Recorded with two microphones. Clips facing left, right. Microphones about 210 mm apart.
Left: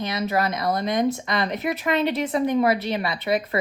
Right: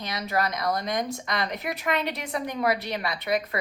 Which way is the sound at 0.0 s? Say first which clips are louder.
Left 4 dB; 25° left (ahead or behind).